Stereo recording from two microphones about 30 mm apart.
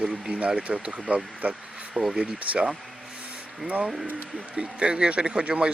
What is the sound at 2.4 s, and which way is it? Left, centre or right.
Speech, right.